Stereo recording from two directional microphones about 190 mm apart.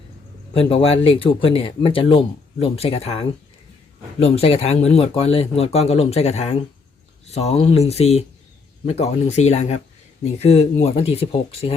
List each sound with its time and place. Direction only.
0.5 s speech: 30° left (ahead or behind)